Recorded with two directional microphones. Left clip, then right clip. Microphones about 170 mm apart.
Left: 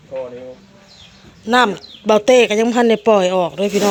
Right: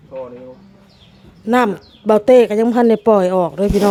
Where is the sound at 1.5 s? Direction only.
35° right (ahead or behind).